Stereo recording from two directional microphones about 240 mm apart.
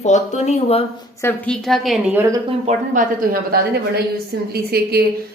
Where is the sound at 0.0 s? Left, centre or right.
Left.